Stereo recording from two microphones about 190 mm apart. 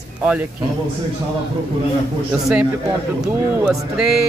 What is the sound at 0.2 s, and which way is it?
Speech, 5° right (ahead or behind).